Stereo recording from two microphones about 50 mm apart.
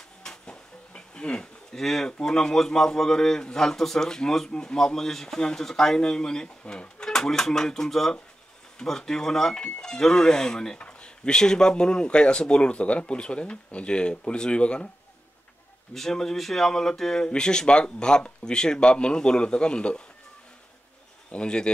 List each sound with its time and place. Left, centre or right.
0.2 s a sound: centre
2.2 s speech: centre
15.9 s speech: centre
21.3 s speech: centre